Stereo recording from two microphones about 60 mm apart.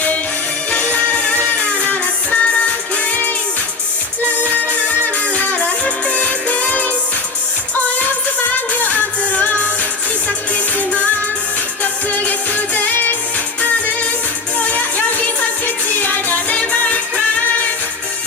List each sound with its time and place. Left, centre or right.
0.7 s music: left
4.4 s music: left
10.8 s music: left
14.6 s music: left